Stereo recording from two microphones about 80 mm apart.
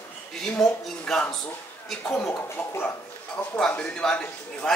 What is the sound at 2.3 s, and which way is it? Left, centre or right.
Speech, left.